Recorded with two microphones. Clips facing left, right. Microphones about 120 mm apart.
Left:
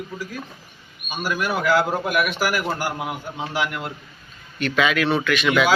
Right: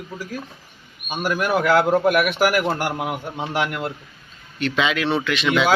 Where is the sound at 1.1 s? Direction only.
50° right (ahead or behind).